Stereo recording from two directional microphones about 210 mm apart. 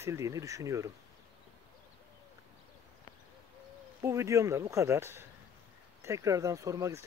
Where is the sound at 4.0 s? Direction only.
15° right (ahead or behind).